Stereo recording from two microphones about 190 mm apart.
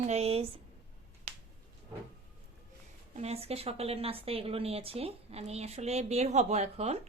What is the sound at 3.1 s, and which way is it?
Speech, 35° right (ahead or behind).